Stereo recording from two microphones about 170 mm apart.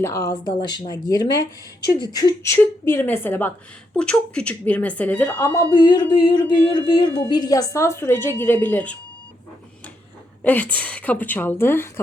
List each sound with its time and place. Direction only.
0.0 s a woman's voice: 20° left (ahead or behind)
10.4 s a woman's voice: 10° left (ahead or behind)